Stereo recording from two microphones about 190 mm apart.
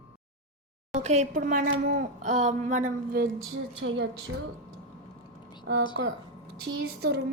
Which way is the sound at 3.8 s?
65° right (ahead or behind).